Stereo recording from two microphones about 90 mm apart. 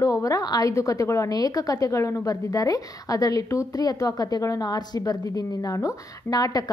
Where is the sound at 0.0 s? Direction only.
40° left (ahead or behind).